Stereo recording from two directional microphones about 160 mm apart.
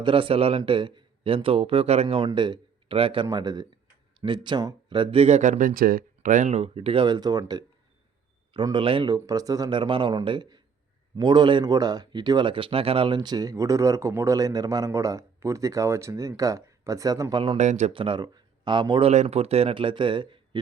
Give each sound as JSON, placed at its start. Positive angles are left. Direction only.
{"t": 0.0, "sound": "speech", "side_deg": -35}
{"t": 17.6, "sound": "speech", "side_deg": -45}
{"t": 17.9, "sound": "speech", "side_deg": -30}
{"t": 19.1, "sound": "speech", "side_deg": -45}